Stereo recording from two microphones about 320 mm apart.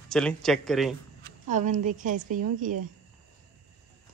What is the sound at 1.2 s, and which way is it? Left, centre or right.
A woman's voice, right.